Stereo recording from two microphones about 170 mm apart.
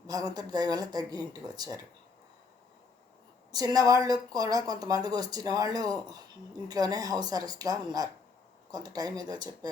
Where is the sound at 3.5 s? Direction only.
20° right (ahead or behind).